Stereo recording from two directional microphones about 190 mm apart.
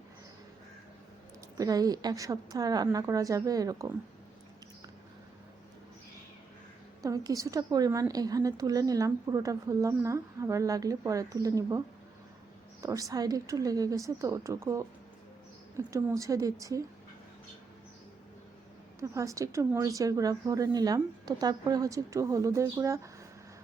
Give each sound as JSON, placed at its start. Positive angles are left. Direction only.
{"t": 1.5, "sound": "a woman's voice", "side_deg": -20}
{"t": 7.0, "sound": "speech", "side_deg": -20}
{"t": 12.8, "sound": "speech", "side_deg": -15}
{"t": 18.9, "sound": "speech", "side_deg": -15}